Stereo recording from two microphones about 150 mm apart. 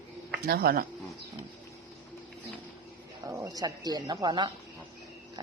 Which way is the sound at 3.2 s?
20° right (ahead or behind).